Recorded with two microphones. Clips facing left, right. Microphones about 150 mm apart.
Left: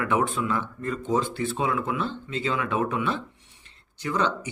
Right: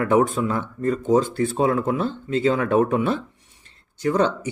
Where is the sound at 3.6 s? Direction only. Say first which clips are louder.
Right 9 dB; 45° right (ahead or behind).